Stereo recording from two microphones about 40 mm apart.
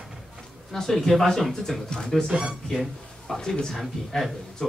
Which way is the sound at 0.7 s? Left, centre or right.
Centre.